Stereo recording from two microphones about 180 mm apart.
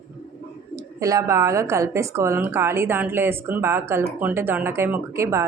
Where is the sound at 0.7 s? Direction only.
20° right (ahead or behind).